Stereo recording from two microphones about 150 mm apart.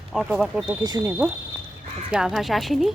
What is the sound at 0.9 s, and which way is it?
Speech, 25° right (ahead or behind).